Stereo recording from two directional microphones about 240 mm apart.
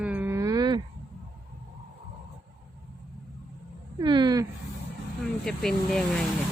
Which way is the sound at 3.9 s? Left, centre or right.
Centre.